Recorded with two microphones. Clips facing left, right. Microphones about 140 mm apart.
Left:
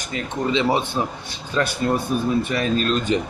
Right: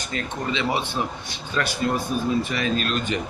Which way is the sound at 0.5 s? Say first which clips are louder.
Left 5 dB; 30° left (ahead or behind).